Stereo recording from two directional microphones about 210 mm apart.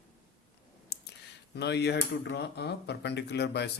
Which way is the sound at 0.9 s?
50° left (ahead or behind).